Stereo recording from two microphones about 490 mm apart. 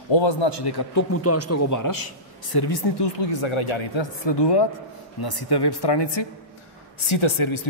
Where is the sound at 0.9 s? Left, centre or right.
Left.